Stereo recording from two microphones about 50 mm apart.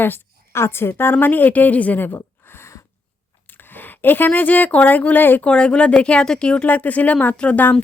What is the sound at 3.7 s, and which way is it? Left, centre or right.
Speech, left.